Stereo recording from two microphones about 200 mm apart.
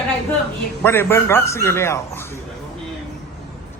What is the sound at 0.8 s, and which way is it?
Speech, 10° left (ahead or behind).